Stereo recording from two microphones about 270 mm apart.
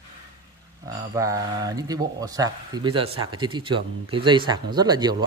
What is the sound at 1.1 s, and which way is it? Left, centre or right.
Speech, centre.